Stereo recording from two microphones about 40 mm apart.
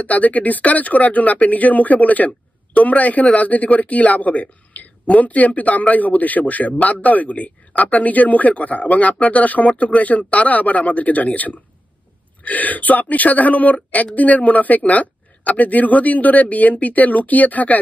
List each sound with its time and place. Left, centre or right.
0.0 s speech: left